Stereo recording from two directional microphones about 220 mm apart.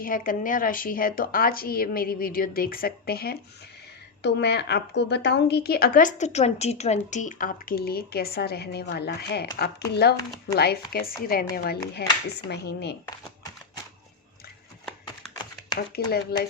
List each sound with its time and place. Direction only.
0.0 s a woman's voice: 40° left (ahead or behind)
16.0 s a woman's voice: 45° left (ahead or behind)